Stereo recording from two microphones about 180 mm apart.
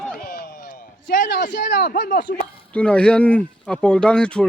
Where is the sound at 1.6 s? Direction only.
60° left (ahead or behind).